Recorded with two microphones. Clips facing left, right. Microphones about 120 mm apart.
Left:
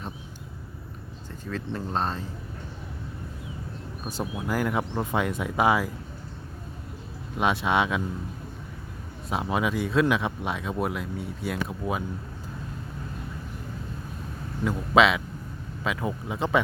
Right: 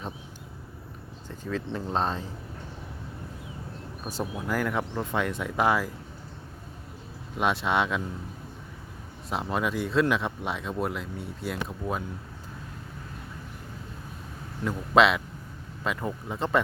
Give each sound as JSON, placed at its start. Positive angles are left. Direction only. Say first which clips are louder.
{"t": 1.9, "sound": "speech", "louder": "right 1 dB", "side_deg": -20}
{"t": 4.0, "sound": "speech", "louder": "left 1 dB", "side_deg": 5}
{"t": 7.3, "sound": "speech", "louder": "left 2 dB", "side_deg": 0}
{"t": 9.3, "sound": "speech", "louder": "left 2 dB", "side_deg": 5}
{"t": 14.6, "sound": "speech", "louder": "left 1 dB", "side_deg": 0}